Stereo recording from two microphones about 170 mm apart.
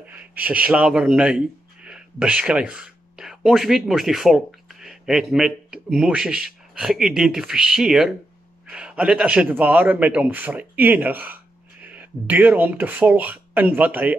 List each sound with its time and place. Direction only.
0.0 s a man's voice: 10° right (ahead or behind)